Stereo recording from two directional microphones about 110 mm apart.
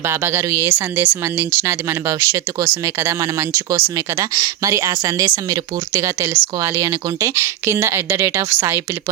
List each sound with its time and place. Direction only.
0.1 s speech: 25° right (ahead or behind)